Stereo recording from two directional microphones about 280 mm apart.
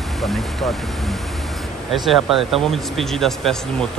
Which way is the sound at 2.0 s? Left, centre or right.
Centre.